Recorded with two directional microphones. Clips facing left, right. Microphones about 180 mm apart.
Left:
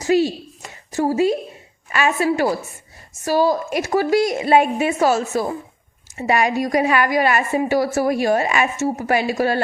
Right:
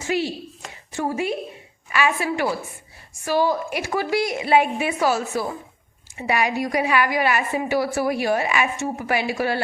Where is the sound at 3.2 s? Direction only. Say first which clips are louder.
Left 3 dB; 40° left (ahead or behind).